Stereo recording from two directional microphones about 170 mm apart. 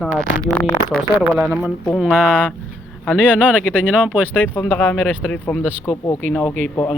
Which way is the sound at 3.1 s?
10° right (ahead or behind).